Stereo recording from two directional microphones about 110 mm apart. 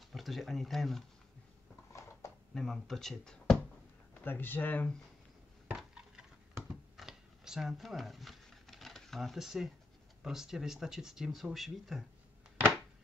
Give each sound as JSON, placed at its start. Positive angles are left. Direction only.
{"t": 0.1, "sound": "speech", "side_deg": 0}
{"t": 1.9, "sound": "a sound", "side_deg": 25}
{"t": 2.5, "sound": "speech", "side_deg": 5}
{"t": 4.1, "sound": "speech", "side_deg": 20}
{"t": 5.8, "sound": "dishes", "side_deg": -5}
{"t": 6.7, "sound": "a sound", "side_deg": -5}
{"t": 10.2, "sound": "speech", "side_deg": -5}